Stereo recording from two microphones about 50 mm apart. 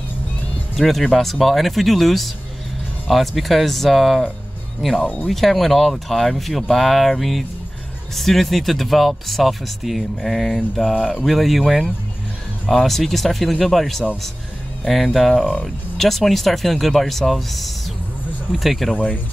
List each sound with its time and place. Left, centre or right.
0.7 s speech: centre
5.0 s speech: left
5.3 s speech: centre
15.1 s speech: centre
15.6 s speech: centre